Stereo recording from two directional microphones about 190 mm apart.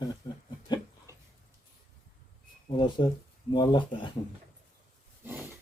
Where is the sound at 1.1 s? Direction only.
15° right (ahead or behind).